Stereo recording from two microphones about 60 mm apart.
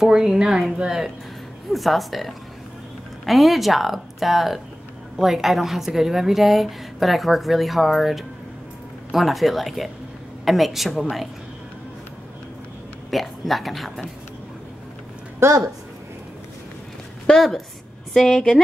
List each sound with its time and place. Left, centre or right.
0.0 s a woman's voice: centre
13.1 s a woman's voice: centre
15.4 s a woman's voice: right
17.3 s a woman's voice: centre